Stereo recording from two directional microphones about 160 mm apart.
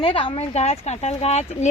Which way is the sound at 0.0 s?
30° left (ahead or behind).